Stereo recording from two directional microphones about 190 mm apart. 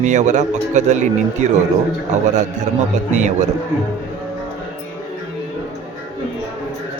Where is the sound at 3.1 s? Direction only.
40° right (ahead or behind).